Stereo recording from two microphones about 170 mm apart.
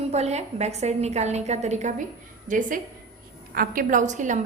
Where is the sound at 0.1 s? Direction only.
40° right (ahead or behind).